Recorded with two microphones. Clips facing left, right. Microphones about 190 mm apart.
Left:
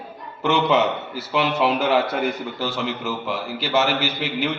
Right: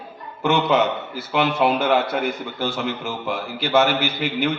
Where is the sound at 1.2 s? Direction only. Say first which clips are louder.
Right 1 dB; 50° right (ahead or behind).